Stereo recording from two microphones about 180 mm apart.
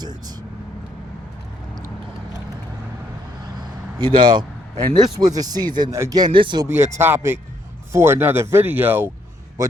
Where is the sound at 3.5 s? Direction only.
25° right (ahead or behind).